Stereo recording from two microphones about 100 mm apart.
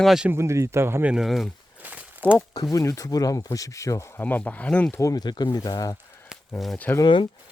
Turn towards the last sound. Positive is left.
turn(degrees=50)  # may be behind; listen again after turning